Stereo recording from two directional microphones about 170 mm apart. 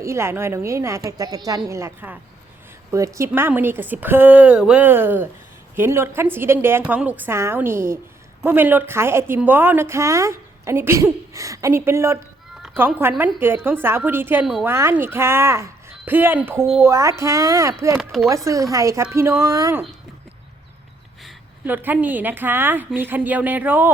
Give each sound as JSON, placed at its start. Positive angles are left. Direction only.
{"t": 0.0, "sound": "a woman's voice", "side_deg": -15}
{"t": 21.6, "sound": "a woman's voice", "side_deg": -10}